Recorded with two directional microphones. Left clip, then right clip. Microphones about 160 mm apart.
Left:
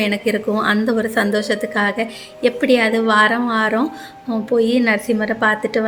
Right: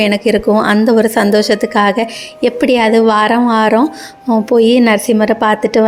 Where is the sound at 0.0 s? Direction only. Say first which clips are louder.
Right 7 dB; 40° right (ahead or behind).